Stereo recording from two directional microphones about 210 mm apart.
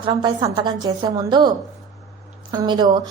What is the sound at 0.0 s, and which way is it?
A woman's voice, 20° right (ahead or behind).